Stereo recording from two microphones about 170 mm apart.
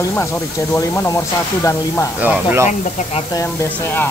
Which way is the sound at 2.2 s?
10° right (ahead or behind).